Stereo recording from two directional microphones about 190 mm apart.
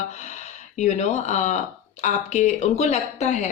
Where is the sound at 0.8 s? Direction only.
40° left (ahead or behind).